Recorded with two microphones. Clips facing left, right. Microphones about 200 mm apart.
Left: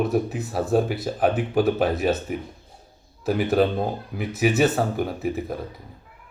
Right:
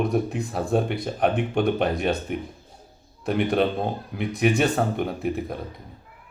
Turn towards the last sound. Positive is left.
turn(degrees=0)  # may be behind; listen again after turning